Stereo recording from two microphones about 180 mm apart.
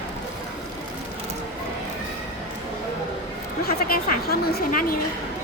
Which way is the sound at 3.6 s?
55° left (ahead or behind).